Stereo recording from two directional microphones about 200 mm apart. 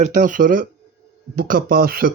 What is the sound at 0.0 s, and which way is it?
Speech, 40° right (ahead or behind).